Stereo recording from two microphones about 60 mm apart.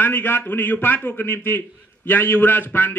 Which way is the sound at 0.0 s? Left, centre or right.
Left.